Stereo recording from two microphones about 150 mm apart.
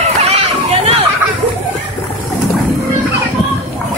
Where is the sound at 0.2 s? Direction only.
40° right (ahead or behind).